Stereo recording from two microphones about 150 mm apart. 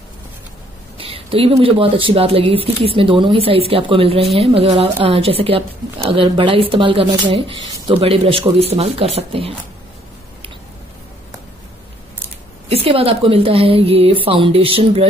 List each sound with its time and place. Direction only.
0.9 s speech: 40° right (ahead or behind)
12.6 s speech: 40° right (ahead or behind)